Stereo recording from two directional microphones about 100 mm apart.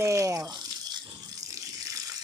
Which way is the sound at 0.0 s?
30° right (ahead or behind).